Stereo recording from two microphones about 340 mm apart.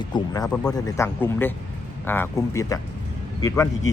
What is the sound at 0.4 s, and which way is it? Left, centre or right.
Speech, centre.